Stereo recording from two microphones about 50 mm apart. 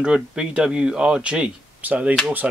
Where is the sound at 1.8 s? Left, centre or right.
Right.